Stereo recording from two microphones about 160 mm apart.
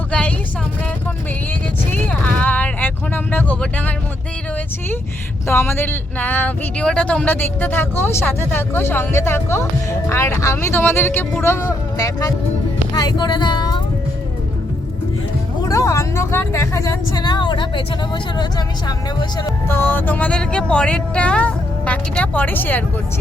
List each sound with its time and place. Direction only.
0.1 s vehicle: 10° left (ahead or behind)
1.9 s vehicle: 10° left (ahead or behind)
5.5 s speech: 15° left (ahead or behind)
15.6 s speech: 20° left (ahead or behind)
19.6 s speech: 15° left (ahead or behind)